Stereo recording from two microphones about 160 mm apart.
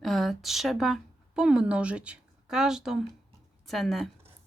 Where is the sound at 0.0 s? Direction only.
Centre (ahead or behind).